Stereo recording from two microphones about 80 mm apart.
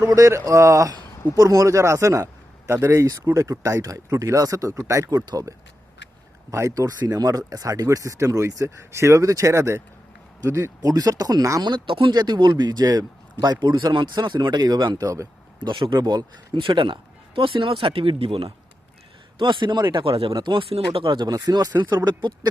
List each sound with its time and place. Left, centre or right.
0.0 s speech: right
6.5 s speech: right
11.6 s a man's voice: right
15.0 s speech: right
15.6 s a man's voice: right
16.0 s speech: right
19.4 s a man's voice: right
20.4 s a man's voice: right